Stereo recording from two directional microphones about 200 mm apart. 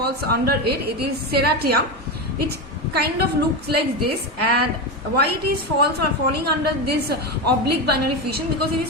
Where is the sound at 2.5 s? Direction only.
50° right (ahead or behind).